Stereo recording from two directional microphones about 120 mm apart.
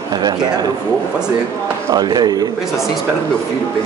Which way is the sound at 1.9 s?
35° right (ahead or behind).